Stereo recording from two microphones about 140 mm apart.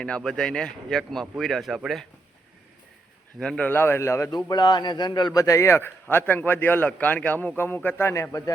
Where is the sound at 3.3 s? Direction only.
5° left (ahead or behind).